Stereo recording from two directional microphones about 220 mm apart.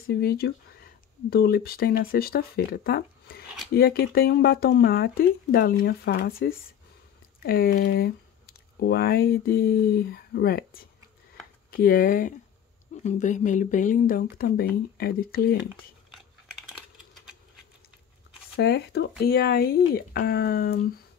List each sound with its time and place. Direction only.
0.0 s speech: 45° left (ahead or behind)
16.6 s typing: 5° right (ahead or behind)
18.6 s speech: 50° left (ahead or behind)